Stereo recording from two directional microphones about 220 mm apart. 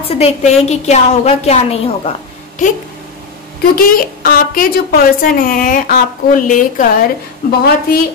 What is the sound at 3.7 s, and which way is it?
A woman's voice, 40° left (ahead or behind).